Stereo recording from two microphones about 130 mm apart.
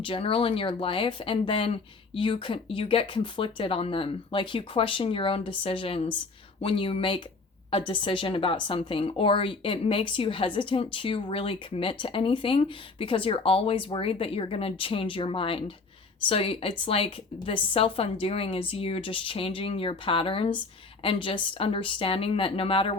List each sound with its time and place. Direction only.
0.0 s a woman's voice: 45° left (ahead or behind)